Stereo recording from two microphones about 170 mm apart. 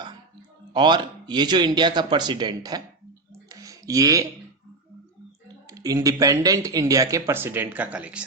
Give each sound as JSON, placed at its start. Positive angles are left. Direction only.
{"t": 0.7, "sound": "speech", "side_deg": -25}
{"t": 3.3, "sound": "a sound", "side_deg": -20}
{"t": 5.6, "sound": "speech", "side_deg": -20}